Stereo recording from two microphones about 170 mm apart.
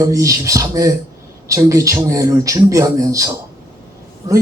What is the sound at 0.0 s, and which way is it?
Speech, 20° right (ahead or behind).